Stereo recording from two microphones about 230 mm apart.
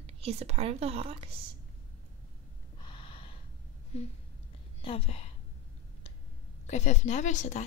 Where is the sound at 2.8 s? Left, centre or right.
Left.